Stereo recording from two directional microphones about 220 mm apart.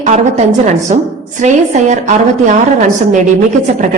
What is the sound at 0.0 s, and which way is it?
A woman's voice, 35° right (ahead or behind).